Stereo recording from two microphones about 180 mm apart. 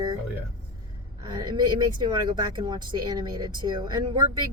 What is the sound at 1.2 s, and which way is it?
Speech, 20° right (ahead or behind).